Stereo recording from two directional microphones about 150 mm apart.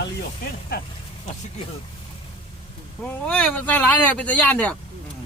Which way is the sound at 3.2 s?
10° left (ahead or behind).